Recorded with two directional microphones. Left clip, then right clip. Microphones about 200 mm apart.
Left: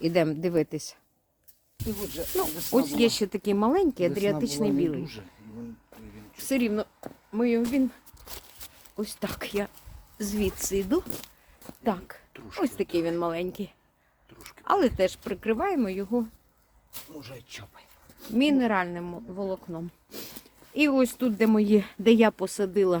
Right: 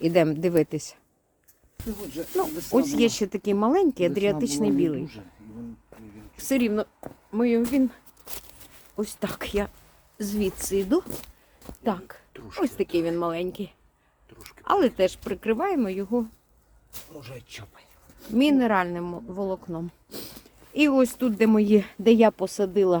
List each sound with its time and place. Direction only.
0.0 s speech: 15° right (ahead or behind)
2.2 s speech: 45° left (ahead or behind)
2.7 s speech: centre (ahead or behind); by 4.9 s 15° right (ahead or behind)
5.0 s speech: 55° left (ahead or behind)
6.3 s speech: 15° right (ahead or behind)
8.2 s a sound: 35° right (ahead or behind)
9.0 s speech: 20° right (ahead or behind)
10.2 s speech: 10° right (ahead or behind)
11.6 s speech: 5° right (ahead or behind)
18.3 s speech: 20° right (ahead or behind); by 23.0 s centre (ahead or behind)